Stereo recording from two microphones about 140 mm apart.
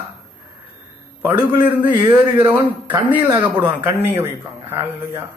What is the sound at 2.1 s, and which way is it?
Speech, 15° right (ahead or behind).